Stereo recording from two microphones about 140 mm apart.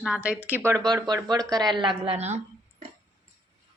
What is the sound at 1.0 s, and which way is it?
Speech, 30° right (ahead or behind).